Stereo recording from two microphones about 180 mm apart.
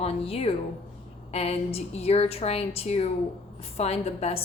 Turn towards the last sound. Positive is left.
turn(degrees=35)  # may be behind; listen again after turning